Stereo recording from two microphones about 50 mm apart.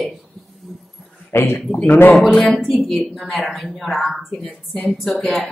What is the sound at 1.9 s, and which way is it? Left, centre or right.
Speech, left.